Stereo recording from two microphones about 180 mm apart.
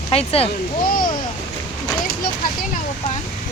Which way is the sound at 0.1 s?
35° left (ahead or behind).